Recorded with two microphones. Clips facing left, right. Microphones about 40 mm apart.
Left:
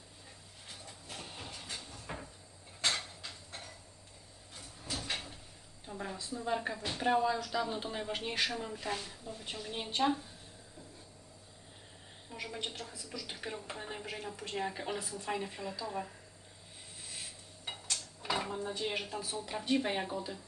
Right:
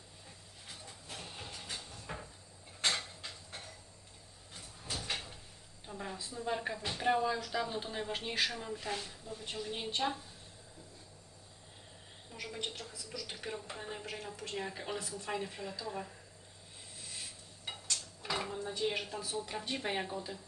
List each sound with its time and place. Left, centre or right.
1.1 s vehicle: centre
1.9 s cupboard open or close: centre
4.8 s a sound: centre
5.9 s speech: centre
12.3 s a woman's voice: centre
13.2 s speech: centre
15.3 s speech: centre
17.7 s a sound: centre
18.8 s speech: centre